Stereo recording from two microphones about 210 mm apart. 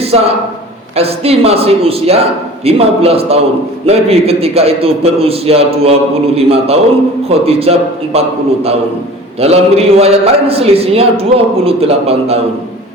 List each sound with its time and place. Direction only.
0.9 s a man's voice: 30° right (ahead or behind)
9.4 s a man's voice: 30° right (ahead or behind)